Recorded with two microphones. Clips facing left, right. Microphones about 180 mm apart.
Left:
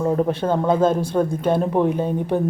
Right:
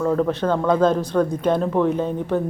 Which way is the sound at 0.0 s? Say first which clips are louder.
Even; 20° left (ahead or behind).